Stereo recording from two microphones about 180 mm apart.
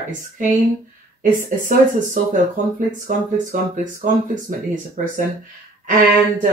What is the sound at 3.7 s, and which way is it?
Speech, 45° right (ahead or behind).